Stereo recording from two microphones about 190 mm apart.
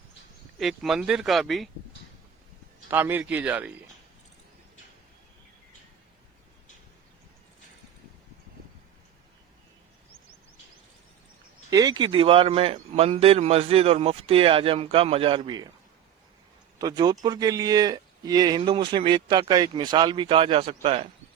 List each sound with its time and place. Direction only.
0.6 s speech: centre (ahead or behind)
2.9 s speech: 10° right (ahead or behind)
11.7 s speech: 20° right (ahead or behind)
16.7 s speech: 20° right (ahead or behind)